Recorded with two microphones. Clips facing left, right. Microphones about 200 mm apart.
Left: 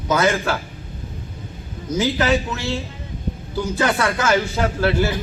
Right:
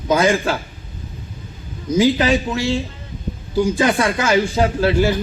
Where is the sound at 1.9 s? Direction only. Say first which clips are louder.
Right 4 dB; 15° right (ahead or behind).